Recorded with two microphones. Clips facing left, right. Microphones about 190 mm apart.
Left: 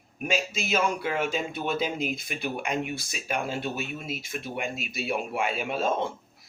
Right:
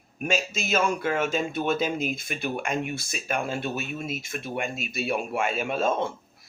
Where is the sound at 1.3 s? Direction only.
50° right (ahead or behind).